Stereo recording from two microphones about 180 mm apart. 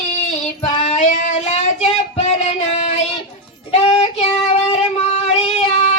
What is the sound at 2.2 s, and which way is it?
Music, 40° left (ahead or behind).